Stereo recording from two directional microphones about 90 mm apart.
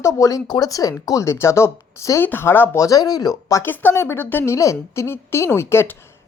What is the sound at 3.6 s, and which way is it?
Speech, 25° left (ahead or behind).